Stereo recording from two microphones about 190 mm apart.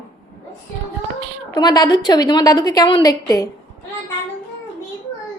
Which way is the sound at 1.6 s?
20° left (ahead or behind).